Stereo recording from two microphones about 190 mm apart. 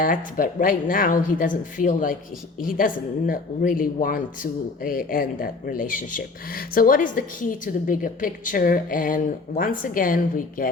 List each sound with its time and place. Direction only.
0.0 s speech: 45° left (ahead or behind)